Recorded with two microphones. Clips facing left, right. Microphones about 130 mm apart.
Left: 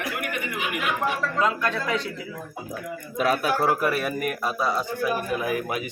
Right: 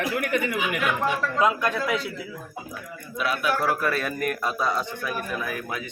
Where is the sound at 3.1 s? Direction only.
45° left (ahead or behind).